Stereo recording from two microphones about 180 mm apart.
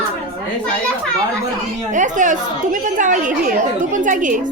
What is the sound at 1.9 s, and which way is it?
A woman's voice, 45° right (ahead or behind).